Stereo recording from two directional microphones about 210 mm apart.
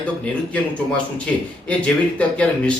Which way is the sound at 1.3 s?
5° left (ahead or behind).